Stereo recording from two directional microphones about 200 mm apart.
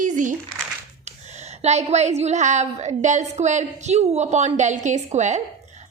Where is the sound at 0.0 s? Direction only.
40° right (ahead or behind).